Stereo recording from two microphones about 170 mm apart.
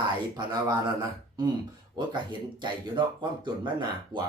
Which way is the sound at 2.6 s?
25° right (ahead or behind).